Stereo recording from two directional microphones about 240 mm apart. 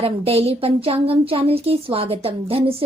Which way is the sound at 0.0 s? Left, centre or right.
Right.